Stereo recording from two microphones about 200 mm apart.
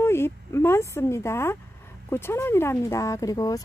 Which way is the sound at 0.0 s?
10° left (ahead or behind).